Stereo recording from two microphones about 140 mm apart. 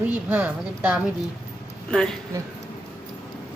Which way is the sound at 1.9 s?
5° left (ahead or behind).